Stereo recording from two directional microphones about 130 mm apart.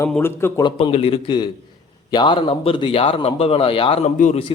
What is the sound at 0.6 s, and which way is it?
A man's voice, 45° left (ahead or behind).